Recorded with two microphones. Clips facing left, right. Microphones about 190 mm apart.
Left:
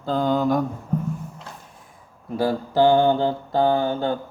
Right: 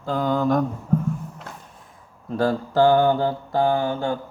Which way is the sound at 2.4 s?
15° left (ahead or behind).